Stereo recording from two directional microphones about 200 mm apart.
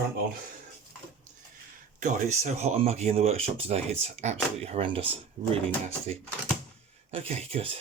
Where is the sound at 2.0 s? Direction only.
35° right (ahead or behind).